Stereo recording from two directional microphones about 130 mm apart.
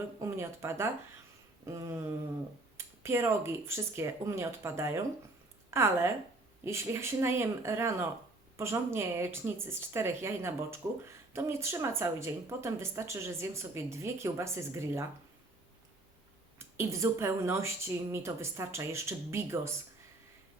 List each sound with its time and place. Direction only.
0.2 s speech: 20° right (ahead or behind)
16.7 s speech: 20° right (ahead or behind)